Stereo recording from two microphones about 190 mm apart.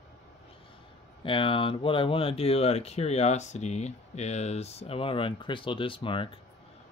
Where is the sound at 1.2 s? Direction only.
25° left (ahead or behind).